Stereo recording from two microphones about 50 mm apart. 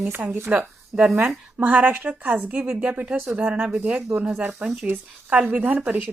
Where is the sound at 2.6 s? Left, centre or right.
Right.